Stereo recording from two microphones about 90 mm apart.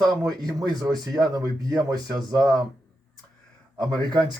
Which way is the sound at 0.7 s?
45° right (ahead or behind).